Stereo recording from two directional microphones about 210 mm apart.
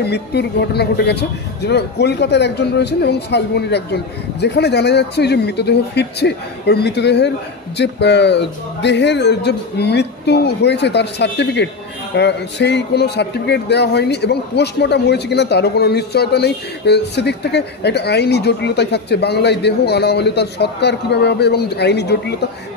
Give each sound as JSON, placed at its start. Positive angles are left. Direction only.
{"t": 0.0, "sound": "a man's voice", "side_deg": 50}